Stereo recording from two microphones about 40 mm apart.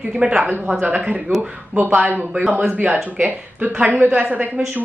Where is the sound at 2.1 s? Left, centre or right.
Right.